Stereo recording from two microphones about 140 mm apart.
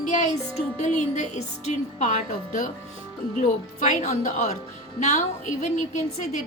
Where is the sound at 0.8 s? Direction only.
55° left (ahead or behind).